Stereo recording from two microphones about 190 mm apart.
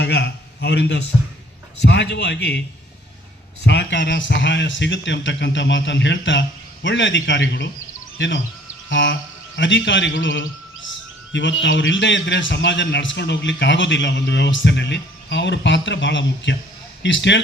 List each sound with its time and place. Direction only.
0.0 s a man's voice: 60° left (ahead or behind)
3.7 s a man's voice: 65° left (ahead or behind)